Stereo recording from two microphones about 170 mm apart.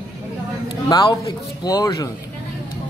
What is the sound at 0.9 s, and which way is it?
Speech, 25° left (ahead or behind).